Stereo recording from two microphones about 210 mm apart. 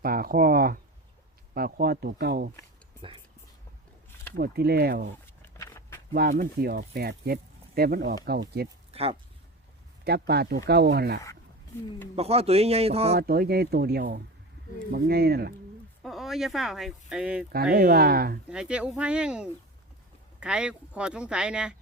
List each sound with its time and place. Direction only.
0.0 s speech: 45° right (ahead or behind)
4.4 s speech: 50° right (ahead or behind)
5.5 s a sound: 10° left (ahead or behind)
6.1 s speech: 45° right (ahead or behind)
8.9 s a sound: 30° right (ahead or behind)
10.0 s speech: 50° right (ahead or behind)
12.1 s a man's voice: 30° right (ahead or behind)
13.1 s speech: 45° right (ahead or behind)
16.0 s speech: centre (ahead or behind)
17.7 s speech: 45° right (ahead or behind)
18.4 s speech: 5° right (ahead or behind)